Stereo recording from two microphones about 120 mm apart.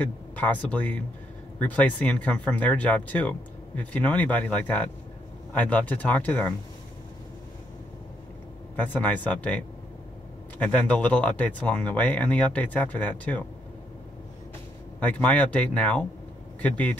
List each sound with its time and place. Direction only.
0.0 s speech: 15° left (ahead or behind)
8.7 s speech: 15° left (ahead or behind)
15.0 s speech: 15° left (ahead or behind)